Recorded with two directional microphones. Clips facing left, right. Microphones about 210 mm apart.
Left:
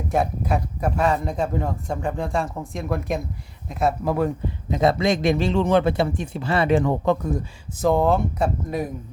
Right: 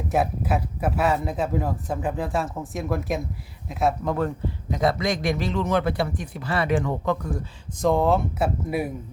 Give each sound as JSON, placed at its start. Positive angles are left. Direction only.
{"t": 0.1, "sound": "a man's voice", "side_deg": -5}
{"t": 4.7, "sound": "a man's voice", "side_deg": 25}
{"t": 7.8, "sound": "a man's voice", "side_deg": 0}